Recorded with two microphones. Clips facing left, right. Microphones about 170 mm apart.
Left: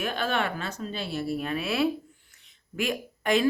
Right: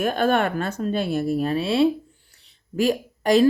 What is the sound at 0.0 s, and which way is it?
Speech, 45° right (ahead or behind).